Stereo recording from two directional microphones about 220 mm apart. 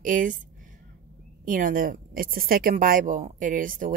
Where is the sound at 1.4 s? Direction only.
35° right (ahead or behind).